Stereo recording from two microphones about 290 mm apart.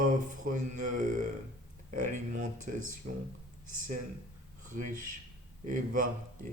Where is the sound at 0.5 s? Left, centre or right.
Right.